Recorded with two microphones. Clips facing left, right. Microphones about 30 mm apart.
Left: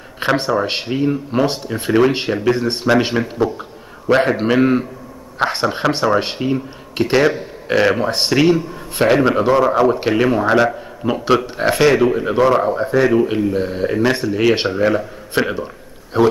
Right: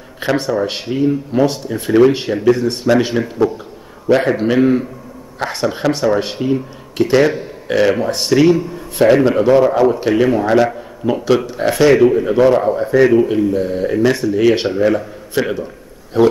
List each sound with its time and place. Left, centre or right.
0.2 s a man's voice: left
11.4 s a man's voice: left
12.9 s a man's voice: centre
13.3 s a man's voice: left
15.5 s a sound: left